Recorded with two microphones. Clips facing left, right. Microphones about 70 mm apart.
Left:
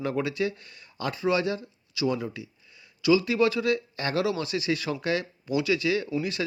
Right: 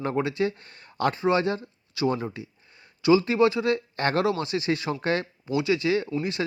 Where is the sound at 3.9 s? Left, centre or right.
Right.